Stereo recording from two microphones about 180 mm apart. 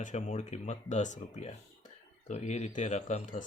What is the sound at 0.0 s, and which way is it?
Speech, 40° left (ahead or behind).